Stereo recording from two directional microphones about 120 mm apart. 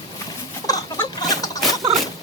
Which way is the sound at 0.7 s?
30° left (ahead or behind).